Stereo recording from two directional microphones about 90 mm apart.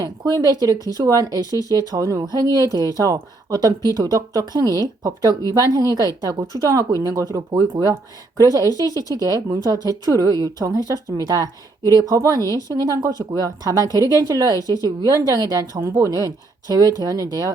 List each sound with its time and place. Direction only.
0.0 s speech: 45° right (ahead or behind)